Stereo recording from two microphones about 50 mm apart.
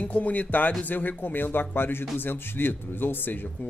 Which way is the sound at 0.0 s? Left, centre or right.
Left.